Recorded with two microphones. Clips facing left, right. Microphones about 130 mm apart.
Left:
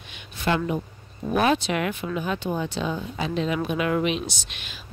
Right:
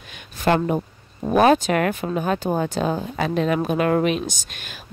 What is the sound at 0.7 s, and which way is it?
Speech, 45° right (ahead or behind).